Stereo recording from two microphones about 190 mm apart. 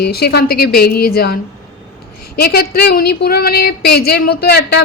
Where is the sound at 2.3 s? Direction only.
55° left (ahead or behind).